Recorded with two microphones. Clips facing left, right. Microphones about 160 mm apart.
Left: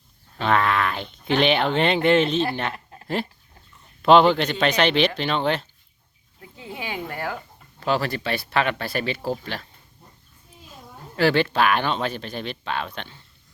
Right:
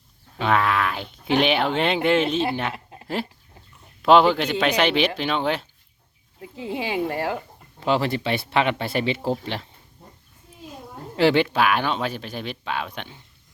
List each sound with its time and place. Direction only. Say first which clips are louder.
0.3 s speech: even; 5° right (ahead or behind)
2.7 s a sound: right 2 dB; 20° right (ahead or behind)
4.0 s speech: left 1 dB; 5° right (ahead or behind)
6.4 s speech: right 6 dB; 25° right (ahead or behind)
11.2 s speech: right 1 dB; 20° right (ahead or behind)